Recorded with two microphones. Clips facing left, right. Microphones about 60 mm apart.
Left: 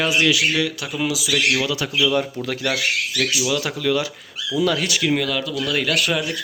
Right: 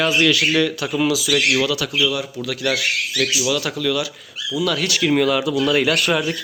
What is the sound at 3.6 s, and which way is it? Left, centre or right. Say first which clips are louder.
Speech: even; centre.